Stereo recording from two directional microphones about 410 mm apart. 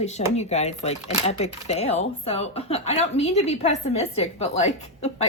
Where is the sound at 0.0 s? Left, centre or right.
Centre.